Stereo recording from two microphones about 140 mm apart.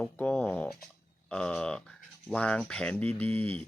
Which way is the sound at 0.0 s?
5° left (ahead or behind).